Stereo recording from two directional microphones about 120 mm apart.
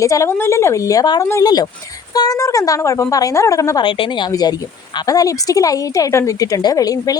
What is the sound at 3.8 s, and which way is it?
Speech, 40° left (ahead or behind).